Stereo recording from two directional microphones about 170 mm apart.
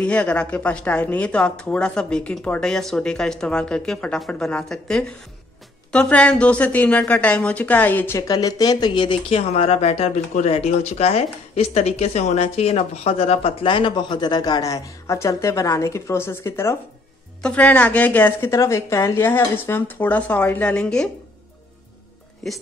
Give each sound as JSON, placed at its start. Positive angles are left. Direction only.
{"t": 0.0, "sound": "a woman's voice", "side_deg": 5}
{"t": 22.4, "sound": "a woman's voice", "side_deg": 0}